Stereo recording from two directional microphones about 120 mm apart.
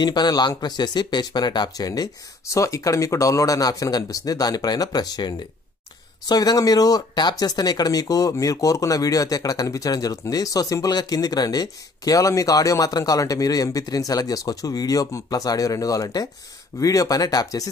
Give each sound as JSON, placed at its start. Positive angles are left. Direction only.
{"t": 0.0, "sound": "speech", "side_deg": 35}